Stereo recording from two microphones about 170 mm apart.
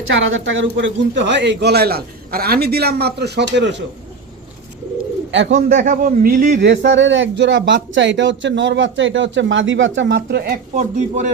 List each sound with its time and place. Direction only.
0.3 s a man's voice: 90° right
5.3 s speech: 90° right
5.5 s a man's voice: 50° right (ahead or behind)
6.6 s speech: 85° right; by 11.3 s 45° right (ahead or behind)